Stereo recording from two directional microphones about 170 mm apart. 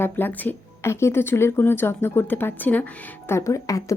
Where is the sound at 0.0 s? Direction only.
10° left (ahead or behind).